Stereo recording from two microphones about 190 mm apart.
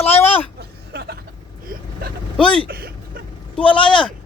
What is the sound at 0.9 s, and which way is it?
Vehicle, 55° right (ahead or behind).